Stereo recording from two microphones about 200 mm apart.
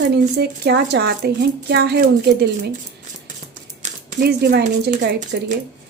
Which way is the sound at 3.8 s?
50° right (ahead or behind).